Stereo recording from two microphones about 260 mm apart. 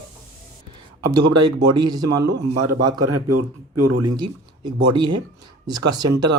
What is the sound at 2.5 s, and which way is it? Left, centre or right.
Speech, right.